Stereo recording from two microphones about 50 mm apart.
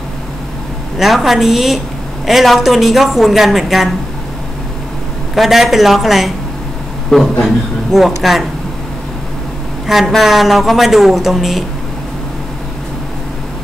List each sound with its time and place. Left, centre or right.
0.9 s speech: centre
5.3 s speech: centre
7.1 s a man's voice: centre
7.4 s speech: centre
9.8 s speech: centre